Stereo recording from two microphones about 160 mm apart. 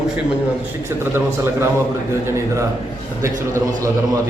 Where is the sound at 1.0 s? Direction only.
15° right (ahead or behind).